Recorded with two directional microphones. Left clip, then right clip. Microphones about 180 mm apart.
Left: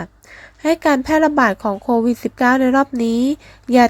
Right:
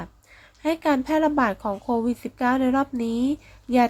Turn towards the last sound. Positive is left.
turn(degrees=35)  # may be behind; listen again after turning